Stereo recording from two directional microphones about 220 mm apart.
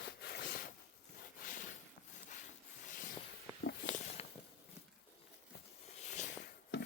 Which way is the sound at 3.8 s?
35° left (ahead or behind).